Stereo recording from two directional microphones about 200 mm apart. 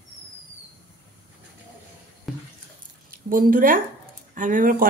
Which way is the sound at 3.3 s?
45° right (ahead or behind).